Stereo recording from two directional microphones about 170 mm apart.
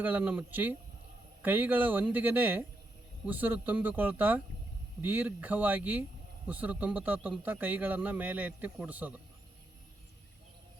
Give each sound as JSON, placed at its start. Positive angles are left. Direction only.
{"t": 0.0, "sound": "a man's voice", "side_deg": -10}